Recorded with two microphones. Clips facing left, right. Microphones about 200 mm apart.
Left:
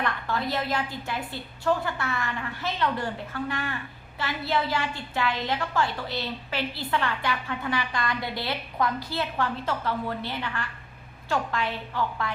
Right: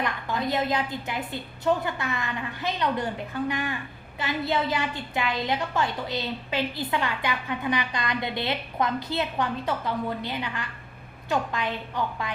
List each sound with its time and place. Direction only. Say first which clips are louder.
0.0 s a woman's voice: right 1 dB; 15° right (ahead or behind)